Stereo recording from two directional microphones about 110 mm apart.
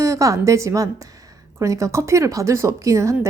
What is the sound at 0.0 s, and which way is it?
Speech, 30° right (ahead or behind).